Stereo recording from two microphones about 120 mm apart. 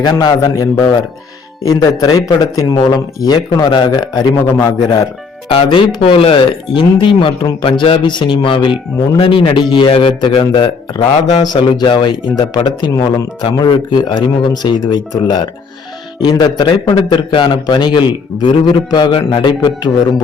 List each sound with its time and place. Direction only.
0.0 s a man's voice: 35° left (ahead or behind)
5.5 s a man's voice: 45° left (ahead or behind)